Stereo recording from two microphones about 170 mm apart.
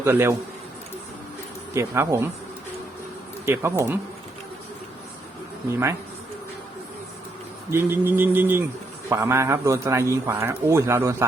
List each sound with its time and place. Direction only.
0.0 s a man's voice: 15° right (ahead or behind)
1.7 s a man's voice: 15° right (ahead or behind)
3.4 s a man's voice: 15° right (ahead or behind)
7.7 s a man's voice: 15° right (ahead or behind)